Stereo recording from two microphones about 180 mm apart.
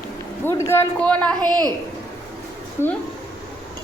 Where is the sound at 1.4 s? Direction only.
20° right (ahead or behind).